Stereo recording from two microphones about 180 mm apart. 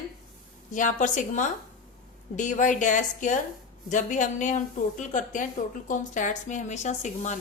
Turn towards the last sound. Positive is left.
turn(degrees=40)  # may be behind; listen again after turning